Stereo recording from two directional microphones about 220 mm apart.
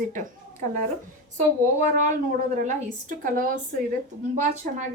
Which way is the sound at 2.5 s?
35° right (ahead or behind).